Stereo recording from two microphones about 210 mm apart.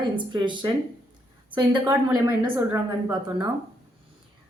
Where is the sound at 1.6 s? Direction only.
20° right (ahead or behind).